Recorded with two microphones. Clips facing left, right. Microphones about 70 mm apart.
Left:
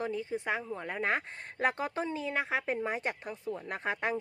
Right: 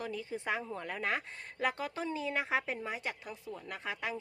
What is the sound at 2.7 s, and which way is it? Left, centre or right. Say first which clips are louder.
A woman's voice: left 5 dB; left.